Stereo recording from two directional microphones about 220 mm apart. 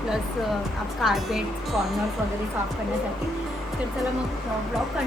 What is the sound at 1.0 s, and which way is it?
Speech, centre (ahead or behind).